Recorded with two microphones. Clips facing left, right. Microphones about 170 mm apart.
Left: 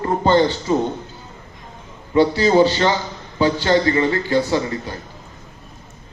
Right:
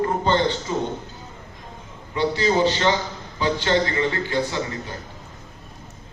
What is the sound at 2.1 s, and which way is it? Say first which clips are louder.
A man's voice: left 6 dB; 40° left (ahead or behind).